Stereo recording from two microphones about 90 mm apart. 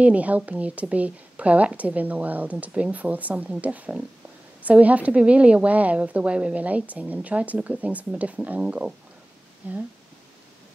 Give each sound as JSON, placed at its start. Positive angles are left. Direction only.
{"t": 0.0, "sound": "a woman's voice", "side_deg": -15}